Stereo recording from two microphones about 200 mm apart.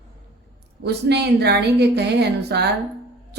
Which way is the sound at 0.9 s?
55° right (ahead or behind).